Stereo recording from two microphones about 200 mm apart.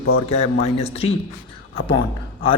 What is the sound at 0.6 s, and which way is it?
Speech, 30° left (ahead or behind).